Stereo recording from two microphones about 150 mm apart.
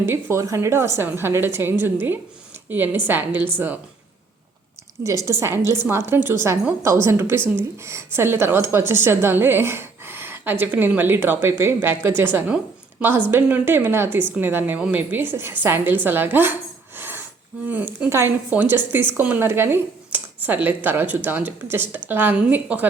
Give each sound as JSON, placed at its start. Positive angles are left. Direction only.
{"t": 0.0, "sound": "a woman's voice", "side_deg": -20}
{"t": 5.0, "sound": "a woman's voice", "side_deg": -20}
{"t": 17.0, "sound": "music", "side_deg": -15}
{"t": 17.7, "sound": "a woman's voice", "side_deg": -10}